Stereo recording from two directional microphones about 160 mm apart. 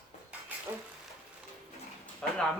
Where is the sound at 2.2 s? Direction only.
5° left (ahead or behind).